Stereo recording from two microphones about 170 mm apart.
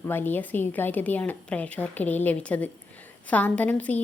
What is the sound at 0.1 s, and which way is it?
A woman's voice, 10° left (ahead or behind).